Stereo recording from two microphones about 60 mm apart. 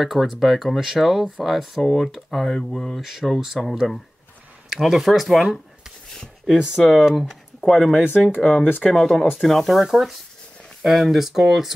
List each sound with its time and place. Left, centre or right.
0.0 s speech: centre
3.0 s speech: centre
6.9 s speech: centre
7.9 s speech: left
8.4 s speech: centre
8.9 s speech: centre